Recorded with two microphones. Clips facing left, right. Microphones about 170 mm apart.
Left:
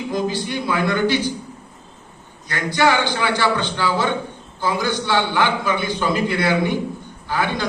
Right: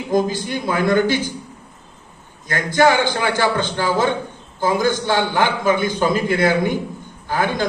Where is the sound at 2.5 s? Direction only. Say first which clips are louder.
Right 3 dB; 45° right (ahead or behind).